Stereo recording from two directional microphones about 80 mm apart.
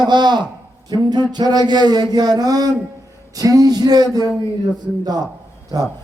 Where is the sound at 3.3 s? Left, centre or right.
Right.